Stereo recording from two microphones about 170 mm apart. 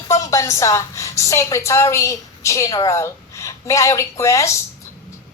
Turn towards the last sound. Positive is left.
turn(degrees=15)  # may be behind; listen again after turning